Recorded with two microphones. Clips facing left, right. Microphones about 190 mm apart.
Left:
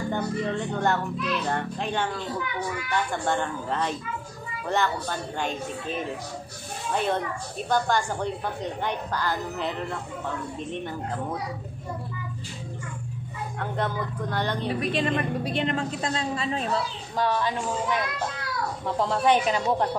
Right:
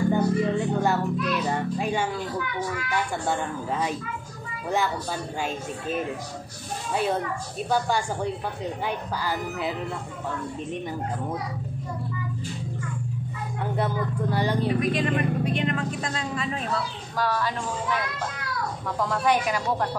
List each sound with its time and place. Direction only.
0.1 s a child's voice: 5° right (ahead or behind)
13.6 s speech: 10° right (ahead or behind)
14.8 s a woman's voice: 30° left (ahead or behind)